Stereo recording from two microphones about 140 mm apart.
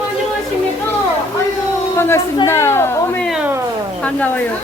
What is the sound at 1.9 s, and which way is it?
A woman's voice, 15° left (ahead or behind).